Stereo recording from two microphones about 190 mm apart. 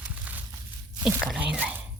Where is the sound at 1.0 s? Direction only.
5° right (ahead or behind).